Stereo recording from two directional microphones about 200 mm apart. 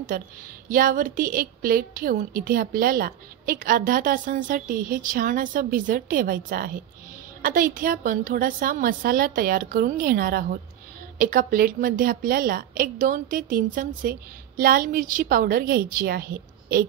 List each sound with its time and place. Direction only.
0.1 s a woman's voice: 45° right (ahead or behind)